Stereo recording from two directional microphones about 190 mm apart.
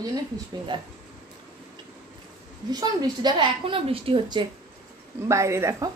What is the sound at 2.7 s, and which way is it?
Speech, 20° right (ahead or behind).